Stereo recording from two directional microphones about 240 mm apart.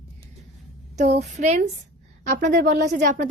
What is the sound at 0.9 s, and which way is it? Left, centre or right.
A woman's voice, right.